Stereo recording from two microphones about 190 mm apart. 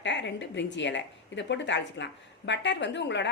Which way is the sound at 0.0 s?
70° left (ahead or behind).